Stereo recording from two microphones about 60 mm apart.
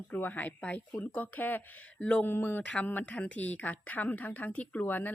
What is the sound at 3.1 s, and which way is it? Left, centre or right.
Speech, centre.